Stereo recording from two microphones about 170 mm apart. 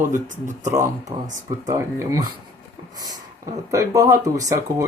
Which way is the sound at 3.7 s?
20° right (ahead or behind).